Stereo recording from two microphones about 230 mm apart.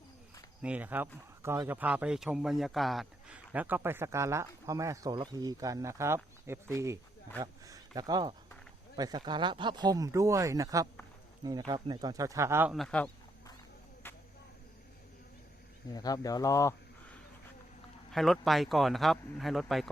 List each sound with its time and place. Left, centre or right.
0.6 s speech: centre
14.0 s a sound: centre
15.9 s speech: centre
18.1 s speech: centre